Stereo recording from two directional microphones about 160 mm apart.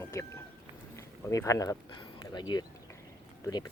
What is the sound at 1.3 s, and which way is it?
Speech, 20° left (ahead or behind).